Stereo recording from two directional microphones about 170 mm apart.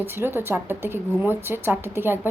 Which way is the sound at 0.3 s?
15° right (ahead or behind).